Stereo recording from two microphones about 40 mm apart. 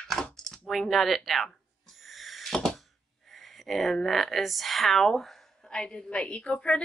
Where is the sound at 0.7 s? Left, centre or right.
Centre.